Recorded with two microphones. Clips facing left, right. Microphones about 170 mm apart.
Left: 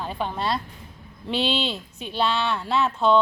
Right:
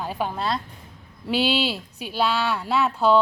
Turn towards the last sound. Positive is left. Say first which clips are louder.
# right 1 dB
turn(degrees=-5)  # may be behind; listen again after turning